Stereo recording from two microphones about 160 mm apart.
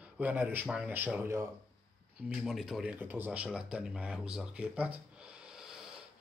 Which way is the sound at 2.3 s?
Centre (ahead or behind).